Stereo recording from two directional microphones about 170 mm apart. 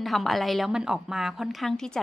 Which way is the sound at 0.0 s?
Centre (ahead or behind).